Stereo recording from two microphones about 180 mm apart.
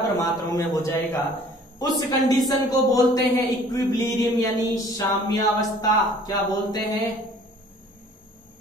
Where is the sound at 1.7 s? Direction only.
20° left (ahead or behind).